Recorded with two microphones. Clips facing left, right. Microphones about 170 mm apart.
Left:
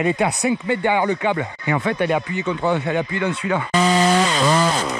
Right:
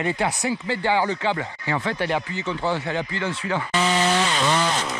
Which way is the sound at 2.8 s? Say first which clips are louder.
Left 5 dB; 20° left (ahead or behind).